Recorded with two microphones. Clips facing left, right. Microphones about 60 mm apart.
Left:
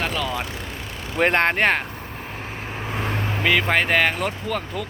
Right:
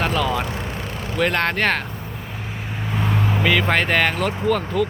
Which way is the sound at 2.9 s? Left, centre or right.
Centre.